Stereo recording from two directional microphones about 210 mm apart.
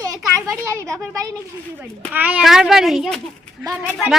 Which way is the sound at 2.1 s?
10° right (ahead or behind).